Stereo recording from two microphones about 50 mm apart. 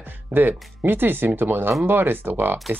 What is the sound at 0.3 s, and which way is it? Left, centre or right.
Speech, right.